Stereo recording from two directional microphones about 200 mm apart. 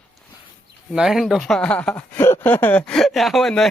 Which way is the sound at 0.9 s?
Centre (ahead or behind).